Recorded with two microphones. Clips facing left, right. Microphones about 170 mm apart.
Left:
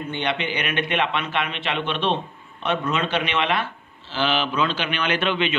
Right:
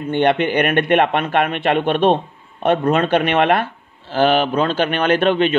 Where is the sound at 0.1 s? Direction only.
55° right (ahead or behind).